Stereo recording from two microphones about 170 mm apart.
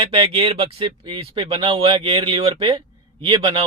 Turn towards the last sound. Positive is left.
turn(degrees=-30)  # may be behind; listen again after turning